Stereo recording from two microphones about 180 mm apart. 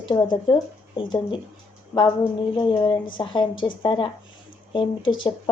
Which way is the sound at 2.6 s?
25° left (ahead or behind).